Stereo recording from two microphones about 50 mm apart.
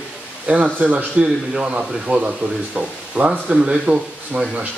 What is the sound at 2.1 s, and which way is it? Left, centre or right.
Speech, right.